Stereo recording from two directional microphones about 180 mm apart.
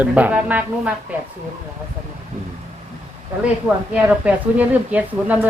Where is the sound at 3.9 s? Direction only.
10° right (ahead or behind).